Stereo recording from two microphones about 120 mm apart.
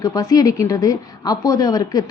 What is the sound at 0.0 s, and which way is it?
A woman's voice, 30° left (ahead or behind).